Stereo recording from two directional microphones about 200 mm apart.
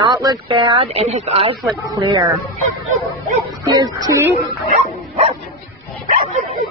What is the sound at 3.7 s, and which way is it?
Speech, 20° right (ahead or behind).